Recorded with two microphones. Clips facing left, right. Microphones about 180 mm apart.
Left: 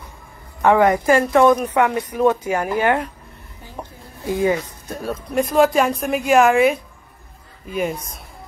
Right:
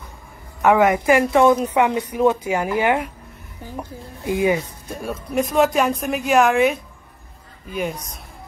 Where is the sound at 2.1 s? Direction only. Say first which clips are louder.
Even; 10° right (ahead or behind).